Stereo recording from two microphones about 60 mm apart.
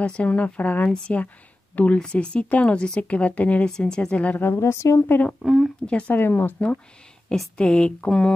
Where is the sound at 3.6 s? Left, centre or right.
Centre.